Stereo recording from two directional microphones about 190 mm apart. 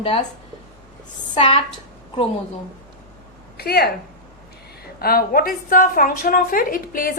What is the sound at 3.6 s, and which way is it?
Speech, 55° left (ahead or behind).